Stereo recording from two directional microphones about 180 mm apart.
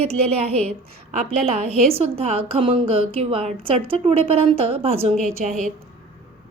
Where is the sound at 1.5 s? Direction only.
30° right (ahead or behind).